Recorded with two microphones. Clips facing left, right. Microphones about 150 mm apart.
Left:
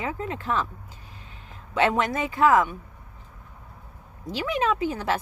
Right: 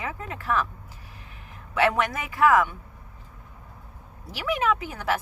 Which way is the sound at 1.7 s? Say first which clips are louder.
Left 1 dB; 25° left (ahead or behind).